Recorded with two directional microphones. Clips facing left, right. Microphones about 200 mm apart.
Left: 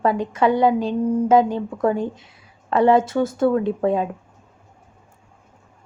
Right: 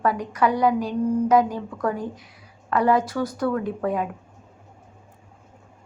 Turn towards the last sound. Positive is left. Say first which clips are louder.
# left 5 dB
turn(degrees=25)  # may be behind; listen again after turning